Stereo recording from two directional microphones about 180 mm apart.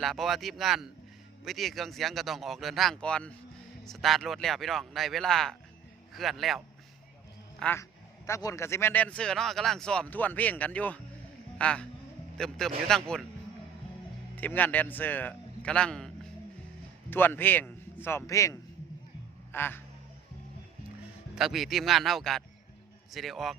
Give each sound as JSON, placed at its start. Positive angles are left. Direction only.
{"t": 0.0, "sound": "speech", "side_deg": 0}
{"t": 7.6, "sound": "speech", "side_deg": 10}
{"t": 14.3, "sound": "a man's voice", "side_deg": 10}
{"t": 19.5, "sound": "speech", "side_deg": 10}
{"t": 21.3, "sound": "speech", "side_deg": 0}